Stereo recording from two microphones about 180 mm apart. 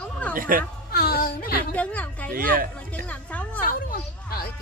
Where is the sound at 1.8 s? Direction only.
5° left (ahead or behind).